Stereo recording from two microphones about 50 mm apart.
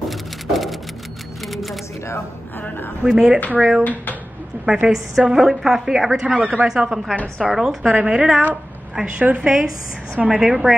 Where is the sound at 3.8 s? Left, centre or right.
Left.